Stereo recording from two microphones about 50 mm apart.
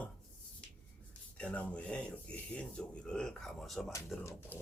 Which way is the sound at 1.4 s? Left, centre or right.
Left.